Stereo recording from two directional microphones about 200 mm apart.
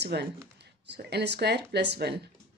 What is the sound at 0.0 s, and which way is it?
Speech, 55° right (ahead or behind).